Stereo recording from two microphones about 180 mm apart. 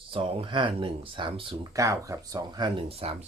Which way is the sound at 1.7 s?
20° right (ahead or behind).